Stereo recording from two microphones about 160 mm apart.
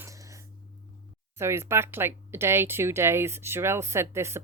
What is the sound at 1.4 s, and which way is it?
Speech, 15° right (ahead or behind).